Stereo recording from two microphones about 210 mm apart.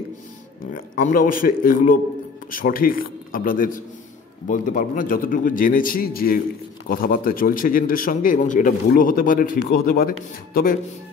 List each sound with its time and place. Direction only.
0.7 s a man's voice: 40° left (ahead or behind)